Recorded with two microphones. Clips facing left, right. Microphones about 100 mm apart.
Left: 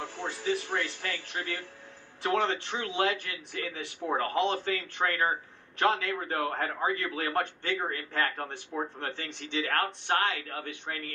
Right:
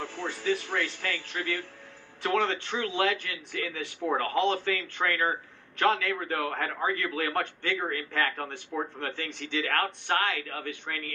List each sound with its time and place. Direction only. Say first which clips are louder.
0.0 s a man's voice: right 2 dB; 25° left (ahead or behind)